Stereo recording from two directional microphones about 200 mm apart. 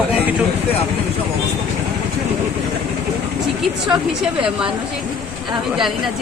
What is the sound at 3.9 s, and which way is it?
Speech, centre (ahead or behind).